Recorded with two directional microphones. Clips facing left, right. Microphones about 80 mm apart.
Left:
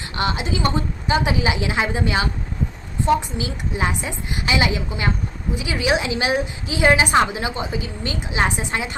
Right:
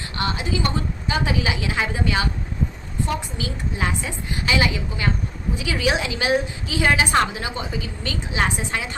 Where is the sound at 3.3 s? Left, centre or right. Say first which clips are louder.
Left 2 dB; centre.